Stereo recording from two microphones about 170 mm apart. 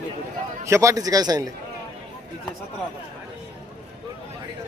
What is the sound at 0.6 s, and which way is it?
Speech, 15° right (ahead or behind).